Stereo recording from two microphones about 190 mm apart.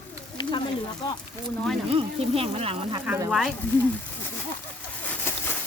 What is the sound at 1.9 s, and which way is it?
Speech, 30° right (ahead or behind).